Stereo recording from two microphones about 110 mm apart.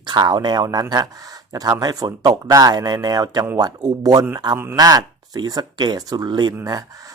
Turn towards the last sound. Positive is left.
turn(degrees=-35)  # may be behind; listen again after turning